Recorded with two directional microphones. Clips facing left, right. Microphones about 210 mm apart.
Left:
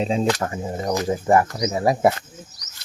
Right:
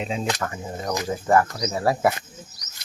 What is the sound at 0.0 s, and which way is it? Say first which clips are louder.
Speech: left 6 dB; 30° left (ahead or behind).